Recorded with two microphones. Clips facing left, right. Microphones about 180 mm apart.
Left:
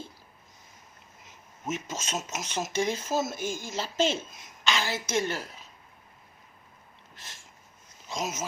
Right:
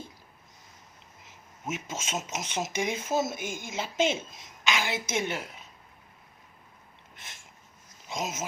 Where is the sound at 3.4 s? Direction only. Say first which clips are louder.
Left 3 dB; 60° right (ahead or behind).